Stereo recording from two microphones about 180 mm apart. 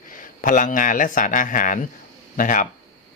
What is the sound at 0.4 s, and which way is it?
Speech, 45° left (ahead or behind).